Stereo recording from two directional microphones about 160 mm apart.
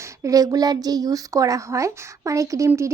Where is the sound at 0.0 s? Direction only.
20° right (ahead or behind).